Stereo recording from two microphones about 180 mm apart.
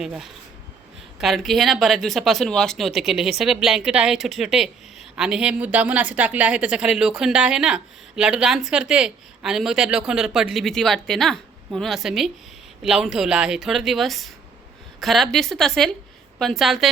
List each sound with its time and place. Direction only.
0.0 s a woman's voice: centre (ahead or behind)